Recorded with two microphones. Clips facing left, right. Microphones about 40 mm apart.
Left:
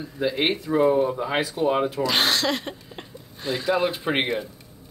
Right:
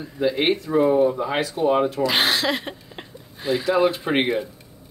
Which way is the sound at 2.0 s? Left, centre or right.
Centre.